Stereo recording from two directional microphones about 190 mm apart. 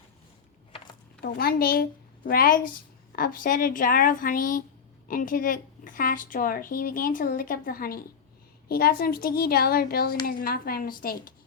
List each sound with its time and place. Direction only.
1.2 s a woman's voice: 55° left (ahead or behind)